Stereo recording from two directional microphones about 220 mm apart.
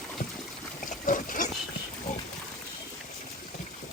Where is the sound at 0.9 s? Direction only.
35° left (ahead or behind).